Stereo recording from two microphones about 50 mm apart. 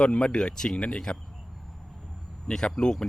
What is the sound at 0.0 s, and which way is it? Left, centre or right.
Speech, centre.